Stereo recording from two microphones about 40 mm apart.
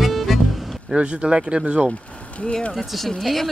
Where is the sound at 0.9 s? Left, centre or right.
Right.